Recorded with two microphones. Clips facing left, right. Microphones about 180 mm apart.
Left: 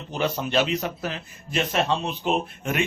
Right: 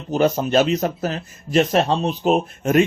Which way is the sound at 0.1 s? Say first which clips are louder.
Right 8 dB; 45° right (ahead or behind).